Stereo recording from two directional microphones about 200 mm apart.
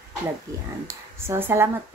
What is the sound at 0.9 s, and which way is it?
Speech, 10° right (ahead or behind).